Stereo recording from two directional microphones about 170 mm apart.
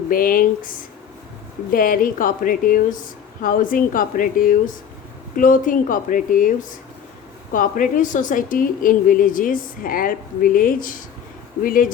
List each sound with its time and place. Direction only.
0.1 s speech: 55° left (ahead or behind)